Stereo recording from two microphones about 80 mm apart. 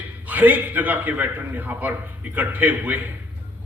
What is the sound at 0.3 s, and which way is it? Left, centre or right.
A man's voice, right.